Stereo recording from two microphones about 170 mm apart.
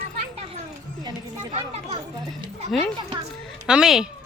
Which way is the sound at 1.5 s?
40° right (ahead or behind).